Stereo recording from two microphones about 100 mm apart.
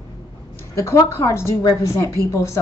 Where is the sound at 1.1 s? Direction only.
25° left (ahead or behind).